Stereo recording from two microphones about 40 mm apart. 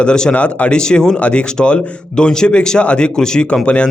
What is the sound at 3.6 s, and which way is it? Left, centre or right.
Speech, left.